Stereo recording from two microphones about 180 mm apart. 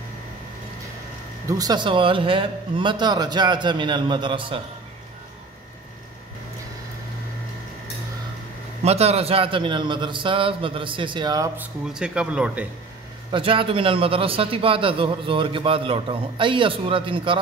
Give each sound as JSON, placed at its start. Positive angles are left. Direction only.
{"t": 1.5, "sound": "a man's voice", "side_deg": -20}
{"t": 8.8, "sound": "a man's voice", "side_deg": -35}
{"t": 11.8, "sound": "speech", "side_deg": -5}
{"t": 13.3, "sound": "a man's voice", "side_deg": -30}